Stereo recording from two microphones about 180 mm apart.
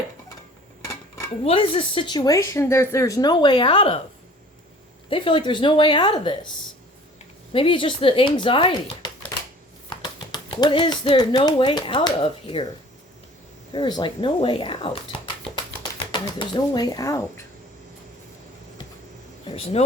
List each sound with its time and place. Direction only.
1.5 s speech: 30° left (ahead or behind)
5.0 s speech: 30° left (ahead or behind)
7.5 s speech: 30° left (ahead or behind)
13.7 s speech: 25° left (ahead or behind)
16.4 s speech: 25° left (ahead or behind)
19.5 s speech: 35° left (ahead or behind)